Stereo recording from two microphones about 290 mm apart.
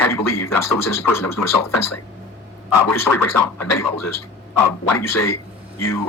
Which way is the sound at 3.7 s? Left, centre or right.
Left.